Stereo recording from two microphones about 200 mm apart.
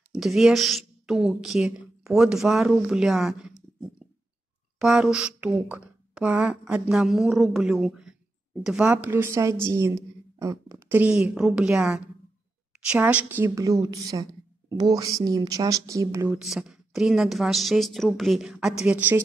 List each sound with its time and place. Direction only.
0.1 s speech: centre (ahead or behind)
4.7 s a woman's voice: centre (ahead or behind)